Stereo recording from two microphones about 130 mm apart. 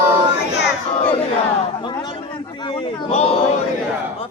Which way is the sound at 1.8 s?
35° left (ahead or behind).